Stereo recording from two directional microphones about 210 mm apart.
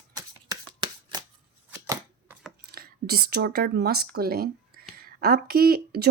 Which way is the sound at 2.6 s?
45° right (ahead or behind).